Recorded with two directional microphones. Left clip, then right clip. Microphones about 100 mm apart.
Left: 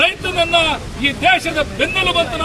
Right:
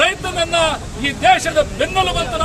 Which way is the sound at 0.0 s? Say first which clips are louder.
Left 1 dB; 30° right (ahead or behind).